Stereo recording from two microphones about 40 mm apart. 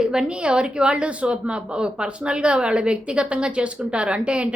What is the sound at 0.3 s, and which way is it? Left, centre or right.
A woman's voice, right.